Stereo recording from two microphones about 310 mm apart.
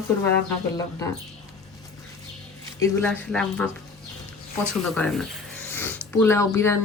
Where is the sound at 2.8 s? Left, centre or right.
Centre.